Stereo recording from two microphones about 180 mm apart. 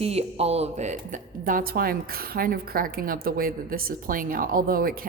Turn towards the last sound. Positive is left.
turn(degrees=-55)  # may be behind; listen again after turning